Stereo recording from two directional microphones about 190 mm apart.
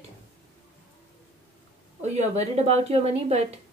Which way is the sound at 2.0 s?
35° right (ahead or behind).